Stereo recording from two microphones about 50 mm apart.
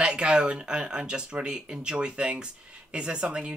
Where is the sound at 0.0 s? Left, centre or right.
Centre.